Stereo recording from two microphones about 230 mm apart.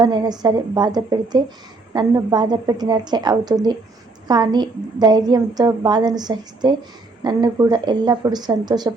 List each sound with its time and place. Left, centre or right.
0.0 s a woman's voice: centre